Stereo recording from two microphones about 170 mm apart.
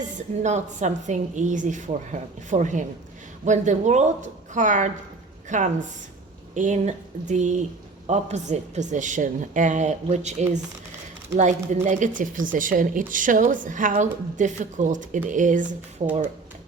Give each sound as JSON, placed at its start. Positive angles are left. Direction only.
{"t": 0.4, "sound": "a woman's voice", "side_deg": -40}